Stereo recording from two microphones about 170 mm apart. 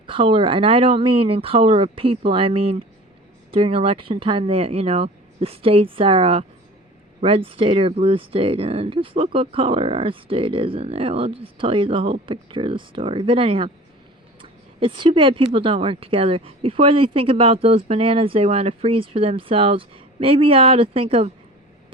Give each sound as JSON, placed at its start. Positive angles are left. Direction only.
{"t": 0.1, "sound": "speech", "side_deg": -30}